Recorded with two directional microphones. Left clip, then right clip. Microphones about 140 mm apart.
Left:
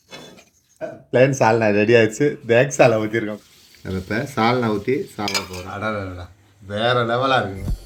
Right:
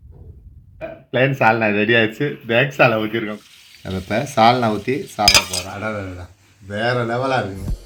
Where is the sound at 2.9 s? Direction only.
35° left (ahead or behind).